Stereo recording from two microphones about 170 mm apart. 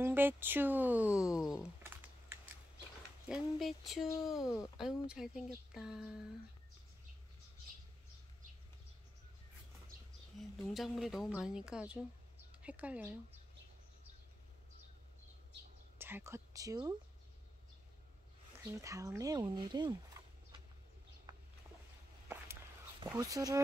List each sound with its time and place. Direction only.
0.0 s speech: 10° right (ahead or behind)
1.8 s computer keyboard: 10° right (ahead or behind)
3.3 s speech: centre (ahead or behind)
10.7 s speech: centre (ahead or behind)
16.0 s speech: 15° right (ahead or behind)
18.7 s speech: 20° right (ahead or behind)
21.3 s boat: 25° right (ahead or behind)
22.9 s speech: 20° right (ahead or behind)